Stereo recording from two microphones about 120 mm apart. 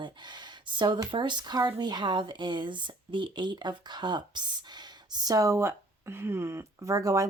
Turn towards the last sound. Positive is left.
turn(degrees=-30)  # may be behind; listen again after turning